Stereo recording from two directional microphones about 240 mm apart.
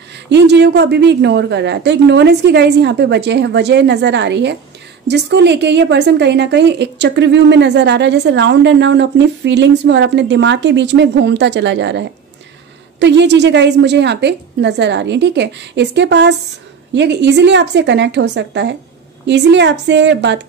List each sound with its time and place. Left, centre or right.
0.3 s a woman's voice: right